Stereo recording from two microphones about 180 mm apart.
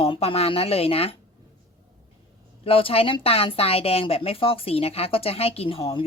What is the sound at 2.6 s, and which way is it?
A woman's voice, 30° left (ahead or behind).